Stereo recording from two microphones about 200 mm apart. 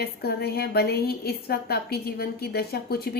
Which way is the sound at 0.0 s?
50° left (ahead or behind).